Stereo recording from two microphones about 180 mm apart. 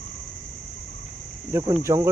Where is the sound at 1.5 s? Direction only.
20° right (ahead or behind).